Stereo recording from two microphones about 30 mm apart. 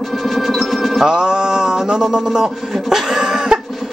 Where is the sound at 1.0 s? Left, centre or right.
Right.